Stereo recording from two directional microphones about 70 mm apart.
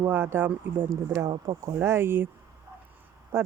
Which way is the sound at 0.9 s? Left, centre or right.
Right.